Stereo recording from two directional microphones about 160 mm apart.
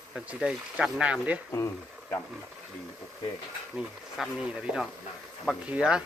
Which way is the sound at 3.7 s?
5° right (ahead or behind).